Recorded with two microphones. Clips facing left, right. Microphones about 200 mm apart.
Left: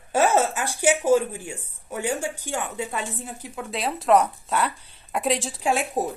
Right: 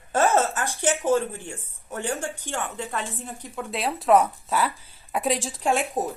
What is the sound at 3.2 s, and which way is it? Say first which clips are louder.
A woman's voice: even; centre (ahead or behind).